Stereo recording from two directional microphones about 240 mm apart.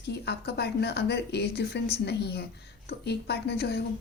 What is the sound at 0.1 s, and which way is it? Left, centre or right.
Speech, left.